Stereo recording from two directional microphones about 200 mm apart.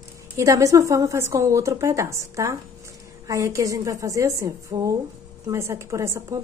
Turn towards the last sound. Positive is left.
turn(degrees=-15)  # may be behind; listen again after turning